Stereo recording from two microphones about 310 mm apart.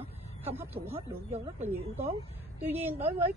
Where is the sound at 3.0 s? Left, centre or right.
Centre.